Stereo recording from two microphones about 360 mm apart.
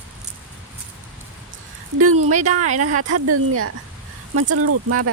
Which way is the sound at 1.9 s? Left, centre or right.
Right.